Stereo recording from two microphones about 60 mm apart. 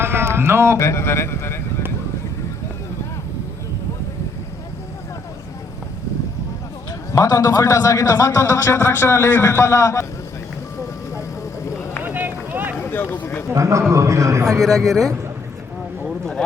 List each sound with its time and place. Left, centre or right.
0.0 s speech: right
0.8 s a man's voice: left
7.1 s a man's voice: left
8.4 s a man's voice: left
12.0 s run: right
12.9 s a sound: left
13.5 s a man's voice: right
14.6 s speech: centre
16.0 s a sound: centre